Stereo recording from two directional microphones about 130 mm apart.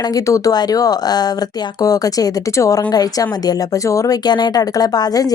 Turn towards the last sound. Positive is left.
turn(degrees=30)  # may be behind; listen again after turning